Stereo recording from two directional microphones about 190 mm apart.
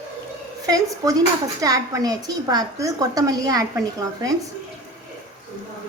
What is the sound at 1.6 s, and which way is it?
A woman's voice, 20° right (ahead or behind).